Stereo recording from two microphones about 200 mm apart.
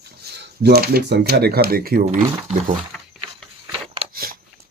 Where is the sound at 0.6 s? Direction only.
50° right (ahead or behind).